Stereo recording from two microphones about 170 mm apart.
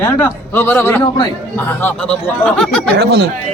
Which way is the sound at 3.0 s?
75° right (ahead or behind).